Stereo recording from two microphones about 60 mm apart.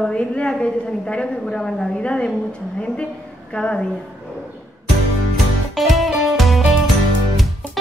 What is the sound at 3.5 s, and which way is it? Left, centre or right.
Speech, centre.